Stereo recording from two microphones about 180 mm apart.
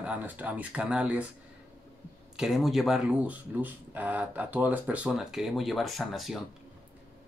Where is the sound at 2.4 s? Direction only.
Centre (ahead or behind).